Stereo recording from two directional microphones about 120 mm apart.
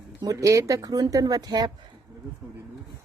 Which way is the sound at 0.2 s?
25° right (ahead or behind).